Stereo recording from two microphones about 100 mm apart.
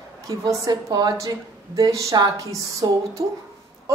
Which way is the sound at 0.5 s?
40° right (ahead or behind).